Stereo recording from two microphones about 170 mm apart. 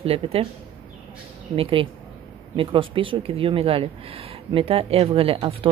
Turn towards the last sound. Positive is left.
turn(degrees=-35)  # may be behind; listen again after turning